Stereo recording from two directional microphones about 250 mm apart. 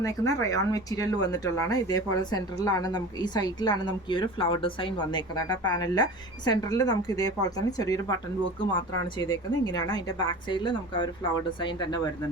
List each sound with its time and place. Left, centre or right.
0.0 s speech: centre
9.3 s speech: centre